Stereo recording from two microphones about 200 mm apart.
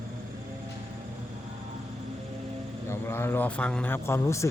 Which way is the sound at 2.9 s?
10° left (ahead or behind).